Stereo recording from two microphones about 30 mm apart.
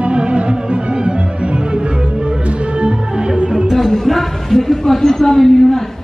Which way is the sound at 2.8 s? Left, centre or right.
Right.